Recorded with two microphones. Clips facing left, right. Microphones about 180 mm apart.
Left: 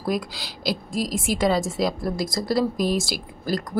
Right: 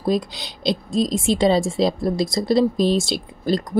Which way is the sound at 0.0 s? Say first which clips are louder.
Right 5 dB; 25° right (ahead or behind).